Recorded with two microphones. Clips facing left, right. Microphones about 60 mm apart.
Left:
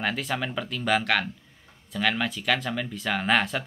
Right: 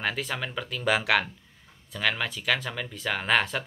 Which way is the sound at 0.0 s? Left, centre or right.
Centre.